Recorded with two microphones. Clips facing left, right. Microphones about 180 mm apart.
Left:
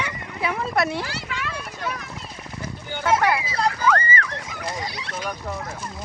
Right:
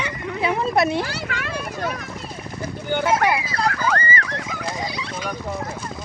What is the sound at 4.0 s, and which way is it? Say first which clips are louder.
Horse: right 1 dB; 35° right (ahead or behind).